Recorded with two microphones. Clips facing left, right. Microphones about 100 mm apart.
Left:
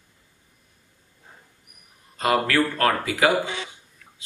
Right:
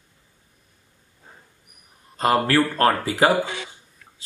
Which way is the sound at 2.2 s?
35° right (ahead or behind).